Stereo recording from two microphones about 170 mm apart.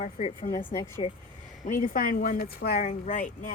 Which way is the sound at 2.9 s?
45° left (ahead or behind).